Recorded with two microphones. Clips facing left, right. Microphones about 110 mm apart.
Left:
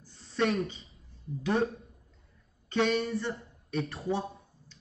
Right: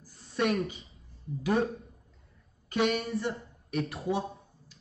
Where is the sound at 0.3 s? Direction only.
30° left (ahead or behind).